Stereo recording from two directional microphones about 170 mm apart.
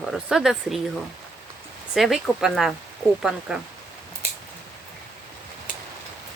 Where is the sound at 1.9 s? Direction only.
5° right (ahead or behind).